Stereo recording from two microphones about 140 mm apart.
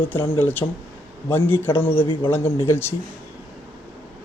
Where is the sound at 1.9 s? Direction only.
40° left (ahead or behind).